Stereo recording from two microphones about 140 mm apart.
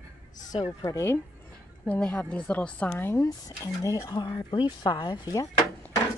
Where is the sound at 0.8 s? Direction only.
20° left (ahead or behind).